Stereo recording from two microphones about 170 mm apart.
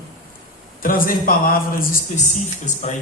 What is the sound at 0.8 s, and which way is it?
A man's voice, 55° left (ahead or behind).